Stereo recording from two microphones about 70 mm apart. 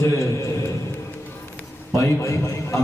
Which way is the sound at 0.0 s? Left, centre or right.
Left.